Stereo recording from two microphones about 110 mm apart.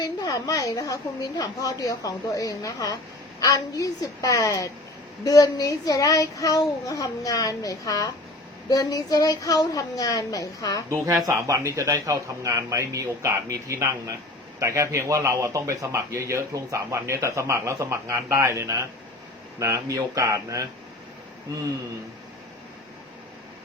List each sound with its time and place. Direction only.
0.0 s a woman's voice: 35° left (ahead or behind)
10.8 s speech: 25° right (ahead or behind)